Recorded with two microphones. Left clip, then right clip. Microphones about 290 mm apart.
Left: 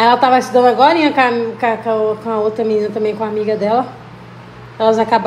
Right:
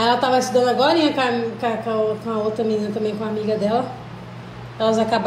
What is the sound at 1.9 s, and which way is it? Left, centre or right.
Speech, left.